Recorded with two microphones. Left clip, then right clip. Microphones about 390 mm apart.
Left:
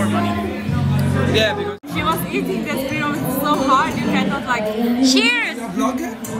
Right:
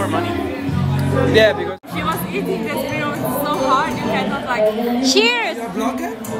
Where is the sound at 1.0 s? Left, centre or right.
Right.